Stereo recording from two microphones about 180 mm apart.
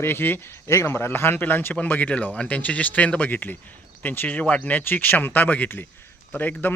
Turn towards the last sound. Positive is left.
turn(degrees=10)  # may be behind; listen again after turning